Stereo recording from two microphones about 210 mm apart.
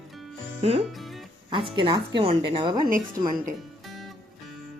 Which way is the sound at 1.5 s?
25° right (ahead or behind).